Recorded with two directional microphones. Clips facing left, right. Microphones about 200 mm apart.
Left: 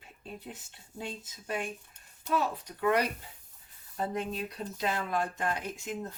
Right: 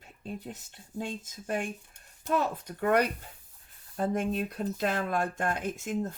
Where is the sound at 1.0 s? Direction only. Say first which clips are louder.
Right 4 dB; 45° right (ahead or behind).